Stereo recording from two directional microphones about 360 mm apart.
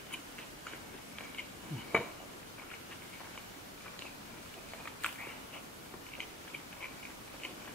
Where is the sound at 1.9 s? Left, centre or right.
Centre.